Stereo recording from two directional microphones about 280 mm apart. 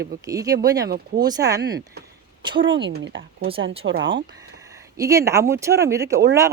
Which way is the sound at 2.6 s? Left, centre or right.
Right.